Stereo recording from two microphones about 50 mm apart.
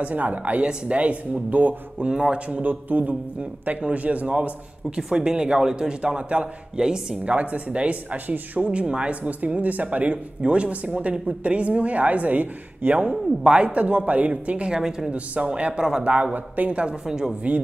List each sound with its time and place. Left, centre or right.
0.0 s a man's voice: right
4.9 s speech: centre
7.3 s speech: right
13.4 s speech: centre
14.7 s speech: centre
17.0 s speech: centre